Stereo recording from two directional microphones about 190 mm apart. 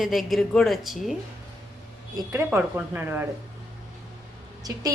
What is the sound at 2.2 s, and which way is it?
A woman's voice, 15° right (ahead or behind).